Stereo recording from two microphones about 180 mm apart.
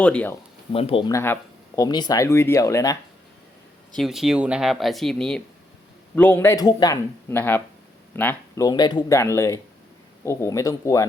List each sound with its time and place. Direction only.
0.0 s speech: 5° left (ahead or behind)
0.7 s speech: 30° left (ahead or behind)
1.1 s speech: 15° left (ahead or behind)
3.9 s speech: centre (ahead or behind); by 11.0 s 20° left (ahead or behind)